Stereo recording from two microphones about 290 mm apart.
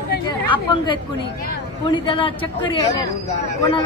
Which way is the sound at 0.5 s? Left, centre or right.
Centre.